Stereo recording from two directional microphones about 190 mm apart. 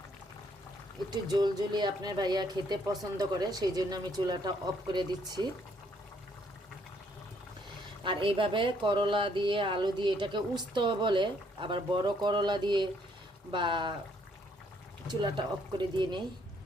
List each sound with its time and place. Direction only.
1.1 s speech: 20° right (ahead or behind)
8.0 s speech: 25° right (ahead or behind)
15.0 s speech: 25° right (ahead or behind)